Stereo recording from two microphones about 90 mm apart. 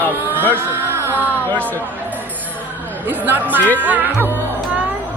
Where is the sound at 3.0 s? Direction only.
20° right (ahead or behind).